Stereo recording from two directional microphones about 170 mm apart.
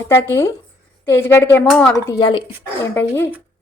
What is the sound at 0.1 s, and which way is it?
Speech, 15° left (ahead or behind).